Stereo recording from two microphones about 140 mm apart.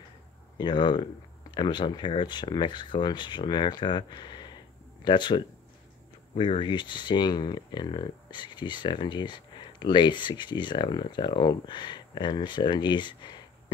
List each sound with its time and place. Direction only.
0.6 s speech: 35° left (ahead or behind)